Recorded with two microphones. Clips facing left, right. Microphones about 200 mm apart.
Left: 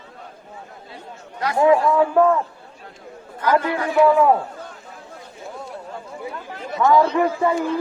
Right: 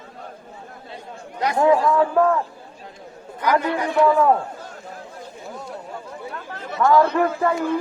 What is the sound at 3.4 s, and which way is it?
Speech, 15° right (ahead or behind).